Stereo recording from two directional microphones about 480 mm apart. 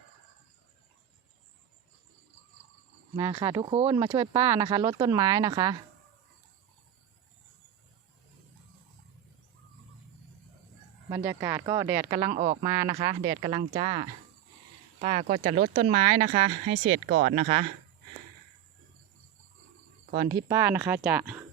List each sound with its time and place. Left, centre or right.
3.2 s speech: centre
11.1 s speech: centre
20.2 s speech: centre